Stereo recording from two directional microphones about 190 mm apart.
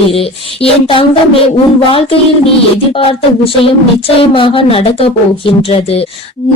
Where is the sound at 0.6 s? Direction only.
30° left (ahead or behind).